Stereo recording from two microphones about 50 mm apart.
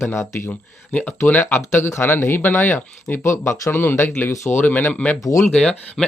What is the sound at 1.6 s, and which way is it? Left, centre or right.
Speech, left.